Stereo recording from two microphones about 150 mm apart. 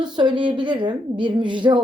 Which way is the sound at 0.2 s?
30° right (ahead or behind).